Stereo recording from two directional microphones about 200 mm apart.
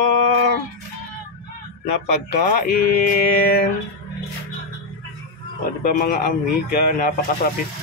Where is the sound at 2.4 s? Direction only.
45° left (ahead or behind).